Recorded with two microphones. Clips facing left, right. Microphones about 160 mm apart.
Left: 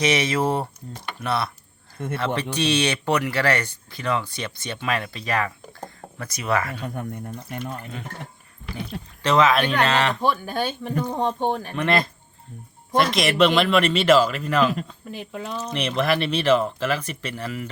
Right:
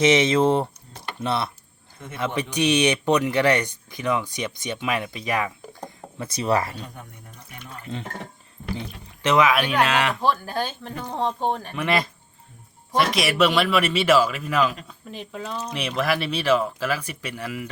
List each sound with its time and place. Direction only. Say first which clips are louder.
0.0 s speech: right 4 dB; 20° right (ahead or behind)
6.8 s speech: left 10 dB; 65° left (ahead or behind)
9.2 s speech: left 1 dB; 15° right (ahead or behind)
10.8 s speech: left 3 dB; 5° left (ahead or behind)
15.1 s speech: left 1 dB; 5° left (ahead or behind)
15.6 s speech: left 2 dB; 5° right (ahead or behind)